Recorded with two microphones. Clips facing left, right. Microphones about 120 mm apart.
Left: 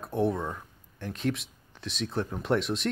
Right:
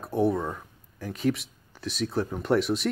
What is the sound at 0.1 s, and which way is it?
Speech, centre (ahead or behind).